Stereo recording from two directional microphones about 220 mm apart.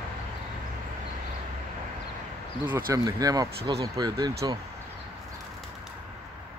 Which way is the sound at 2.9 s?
15° right (ahead or behind).